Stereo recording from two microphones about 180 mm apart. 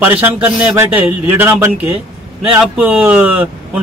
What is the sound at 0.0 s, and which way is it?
Speech, 10° right (ahead or behind).